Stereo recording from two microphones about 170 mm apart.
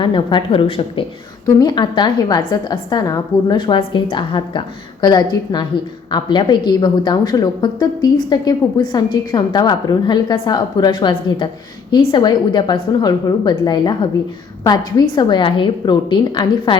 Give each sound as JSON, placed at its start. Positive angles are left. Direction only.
{"t": 0.0, "sound": "a woman's voice", "side_deg": 25}